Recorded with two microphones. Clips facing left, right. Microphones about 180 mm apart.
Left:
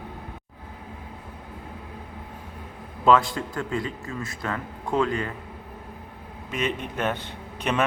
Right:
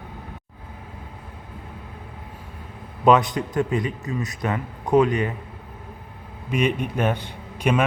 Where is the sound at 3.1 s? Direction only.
20° right (ahead or behind).